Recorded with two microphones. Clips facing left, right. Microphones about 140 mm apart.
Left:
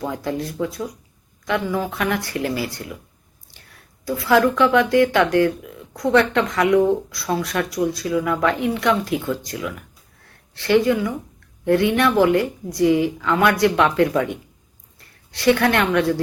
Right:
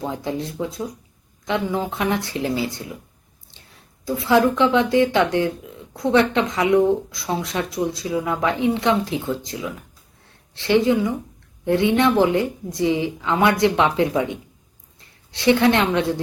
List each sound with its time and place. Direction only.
0.0 s a woman's voice: 20° right (ahead or behind)